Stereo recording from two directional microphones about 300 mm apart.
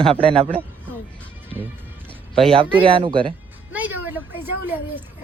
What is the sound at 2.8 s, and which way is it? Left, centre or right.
Speech, centre.